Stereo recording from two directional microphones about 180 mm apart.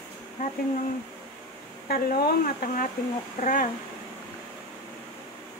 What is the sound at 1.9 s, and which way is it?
Speech, 60° left (ahead or behind).